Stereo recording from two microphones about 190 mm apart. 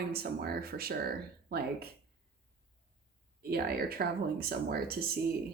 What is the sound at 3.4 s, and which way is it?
Speech, 55° right (ahead or behind).